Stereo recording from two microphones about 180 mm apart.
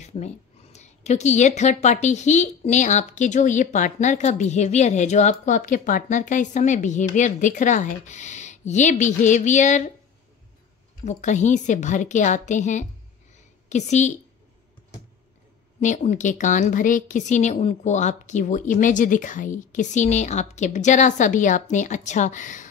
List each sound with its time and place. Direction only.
0.0 s a sound: 40° left (ahead or behind)
0.7 s a woman's voice: 40° left (ahead or behind)
11.1 s a woman's voice: 40° left (ahead or behind)
15.8 s a woman's voice: 40° left (ahead or behind)